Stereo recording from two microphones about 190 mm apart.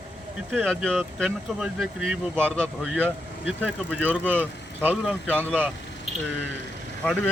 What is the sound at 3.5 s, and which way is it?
Speech, 5° right (ahead or behind).